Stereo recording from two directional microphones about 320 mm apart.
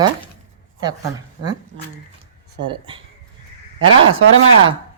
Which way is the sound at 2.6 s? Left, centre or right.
Centre.